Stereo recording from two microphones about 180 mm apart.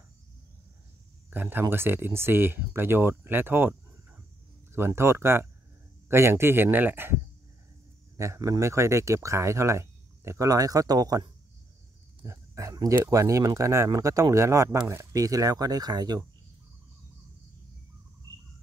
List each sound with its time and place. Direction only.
1.3 s speech: 10° right (ahead or behind)
4.7 s speech: 15° right (ahead or behind)
8.2 s speech: 15° right (ahead or behind)